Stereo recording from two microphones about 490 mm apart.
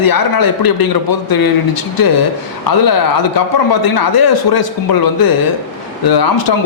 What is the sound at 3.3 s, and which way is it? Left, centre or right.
A man's voice, left.